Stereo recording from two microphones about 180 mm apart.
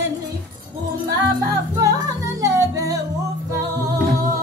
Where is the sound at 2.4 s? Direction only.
20° right (ahead or behind).